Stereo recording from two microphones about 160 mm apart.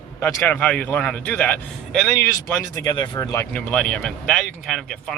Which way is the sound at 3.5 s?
5° left (ahead or behind).